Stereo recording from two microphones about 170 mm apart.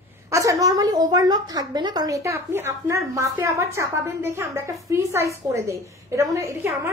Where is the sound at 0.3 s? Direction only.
20° right (ahead or behind).